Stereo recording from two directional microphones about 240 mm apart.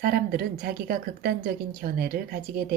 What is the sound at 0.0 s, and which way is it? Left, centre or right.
A woman's voice, right.